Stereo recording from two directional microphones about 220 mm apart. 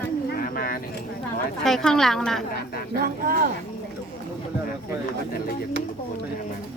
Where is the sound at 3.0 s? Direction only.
40° right (ahead or behind).